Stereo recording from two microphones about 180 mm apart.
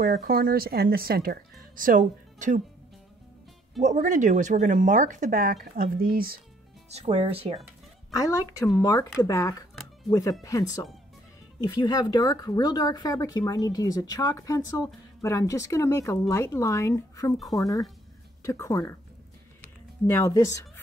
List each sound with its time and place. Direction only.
0.1 s speech: 55° right (ahead or behind)
3.8 s speech: 40° right (ahead or behind)
6.9 s speech: 35° right (ahead or behind)
8.1 s speech: 15° left (ahead or behind)
17.4 s speech: centre (ahead or behind)
18.4 s speech: 15° left (ahead or behind)
19.6 s music: 15° left (ahead or behind)